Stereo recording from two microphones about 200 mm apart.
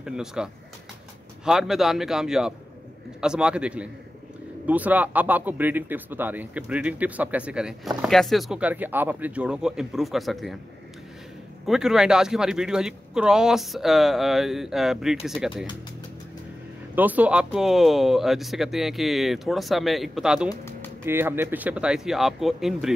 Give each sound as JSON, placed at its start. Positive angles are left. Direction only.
{"t": 0.0, "sound": "speech", "side_deg": -5}
{"t": 11.6, "sound": "speech", "side_deg": 0}
{"t": 16.9, "sound": "speech", "side_deg": -10}
{"t": 20.4, "sound": "music", "side_deg": 15}
{"t": 21.0, "sound": "speech", "side_deg": -10}